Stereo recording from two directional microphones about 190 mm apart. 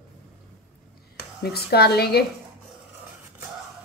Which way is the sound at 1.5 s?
55° left (ahead or behind).